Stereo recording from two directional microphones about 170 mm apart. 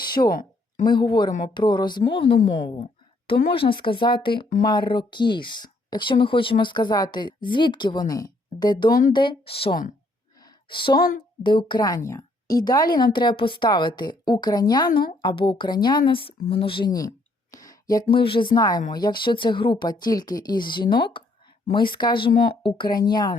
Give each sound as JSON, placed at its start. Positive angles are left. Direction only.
{"t": 0.0, "sound": "a sound", "side_deg": 25}
{"t": 0.3, "sound": "a sound", "side_deg": 60}
{"t": 0.9, "sound": "speech", "side_deg": 25}
{"t": 8.9, "sound": "speech", "side_deg": 55}
{"t": 9.1, "sound": "speech", "side_deg": 25}
{"t": 10.4, "sound": "a sound", "side_deg": 30}
{"t": 10.9, "sound": "speech", "side_deg": 60}
{"t": 11.4, "sound": "speech", "side_deg": 30}
{"t": 14.8, "sound": "speech", "side_deg": 60}
{"t": 15.2, "sound": "speech", "side_deg": 25}
{"t": 18.1, "sound": "speech", "side_deg": 30}